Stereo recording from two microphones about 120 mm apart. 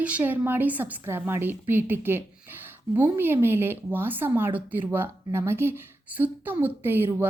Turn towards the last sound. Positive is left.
turn(degrees=-20)  # may be behind; listen again after turning